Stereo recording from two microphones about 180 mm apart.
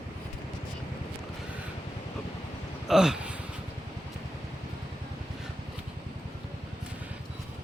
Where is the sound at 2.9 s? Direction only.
5° right (ahead or behind).